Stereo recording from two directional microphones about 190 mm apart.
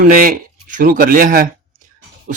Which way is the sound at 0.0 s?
45° right (ahead or behind).